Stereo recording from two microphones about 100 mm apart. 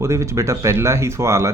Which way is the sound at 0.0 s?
30° right (ahead or behind).